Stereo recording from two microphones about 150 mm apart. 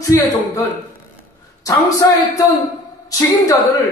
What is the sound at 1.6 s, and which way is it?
A man's voice, 20° left (ahead or behind).